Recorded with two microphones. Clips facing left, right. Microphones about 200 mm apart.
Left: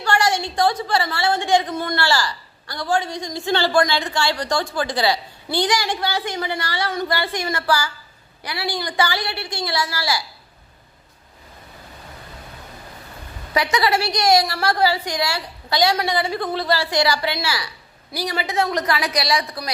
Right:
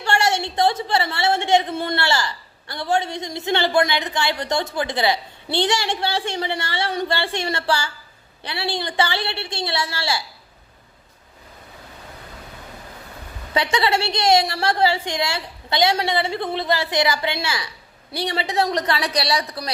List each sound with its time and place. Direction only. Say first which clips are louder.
0.0 s a woman's voice: left 1 dB; 25° right (ahead or behind)
13.5 s a woman's voice: left 1 dB; 30° right (ahead or behind)